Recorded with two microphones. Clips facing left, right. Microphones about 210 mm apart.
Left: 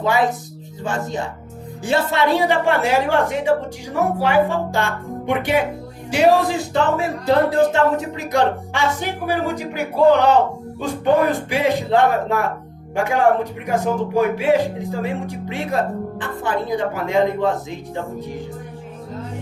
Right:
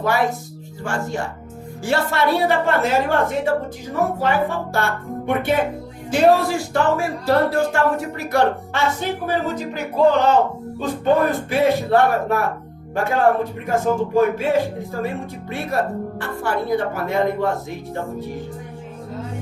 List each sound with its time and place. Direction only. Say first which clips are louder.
0.0 s speech: left 1 dB; 15° left (ahead or behind)